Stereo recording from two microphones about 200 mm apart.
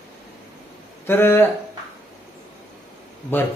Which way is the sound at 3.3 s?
10° left (ahead or behind).